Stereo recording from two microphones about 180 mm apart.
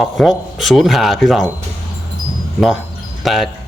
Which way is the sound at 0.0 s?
Centre (ahead or behind).